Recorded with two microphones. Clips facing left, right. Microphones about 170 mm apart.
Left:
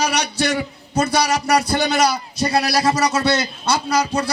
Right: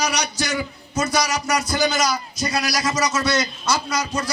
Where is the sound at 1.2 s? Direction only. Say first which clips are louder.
Left 5 dB; 65° left (ahead or behind).